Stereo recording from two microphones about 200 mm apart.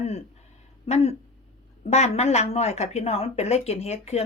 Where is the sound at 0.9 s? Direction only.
30° left (ahead or behind).